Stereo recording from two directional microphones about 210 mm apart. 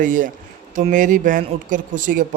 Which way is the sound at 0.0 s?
40° right (ahead or behind).